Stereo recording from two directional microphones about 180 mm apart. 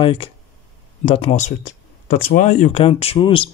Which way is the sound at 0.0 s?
30° left (ahead or behind).